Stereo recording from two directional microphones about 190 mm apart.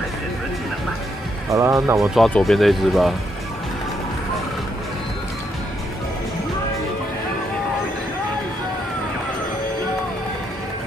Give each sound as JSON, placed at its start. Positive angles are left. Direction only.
{"t": 1.5, "sound": "speech", "side_deg": -15}
{"t": 2.0, "sound": "speech", "side_deg": 0}